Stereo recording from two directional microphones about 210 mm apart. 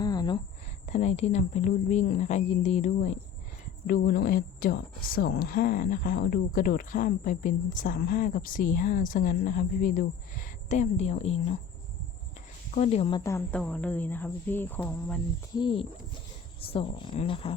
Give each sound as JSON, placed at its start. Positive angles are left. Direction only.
{"t": 0.0, "sound": "a sound", "side_deg": 20}
{"t": 0.9, "sound": "a woman's voice", "side_deg": 35}
{"t": 12.7, "sound": "speech", "side_deg": 30}
{"t": 15.5, "sound": "speech", "side_deg": 25}